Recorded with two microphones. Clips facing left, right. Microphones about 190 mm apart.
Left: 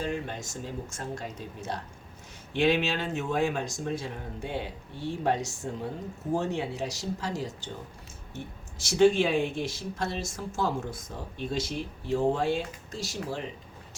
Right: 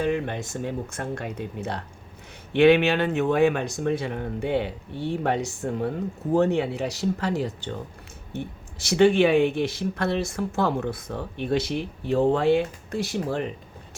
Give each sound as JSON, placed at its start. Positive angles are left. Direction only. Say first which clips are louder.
{"t": 0.0, "sound": "speech", "louder": "right 7 dB", "side_deg": -65}